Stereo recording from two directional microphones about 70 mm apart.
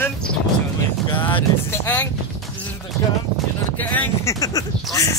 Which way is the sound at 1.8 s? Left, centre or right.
Left.